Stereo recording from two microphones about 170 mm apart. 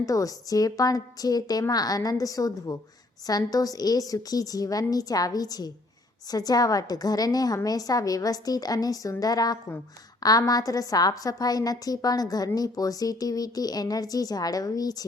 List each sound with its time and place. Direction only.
0.0 s a woman's voice: 20° left (ahead or behind)